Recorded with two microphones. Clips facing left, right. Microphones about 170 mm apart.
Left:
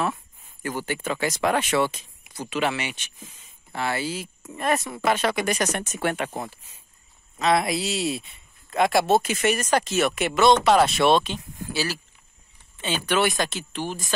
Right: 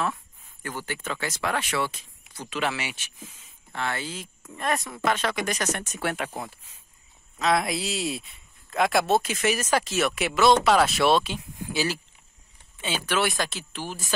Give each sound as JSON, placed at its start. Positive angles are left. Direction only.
{"t": 0.0, "sound": "speech", "side_deg": 5}
{"t": 2.3, "sound": "speech", "side_deg": 5}
{"t": 3.7, "sound": "speech", "side_deg": 10}
{"t": 5.9, "sound": "speech", "side_deg": 0}
{"t": 12.8, "sound": "speech", "side_deg": -5}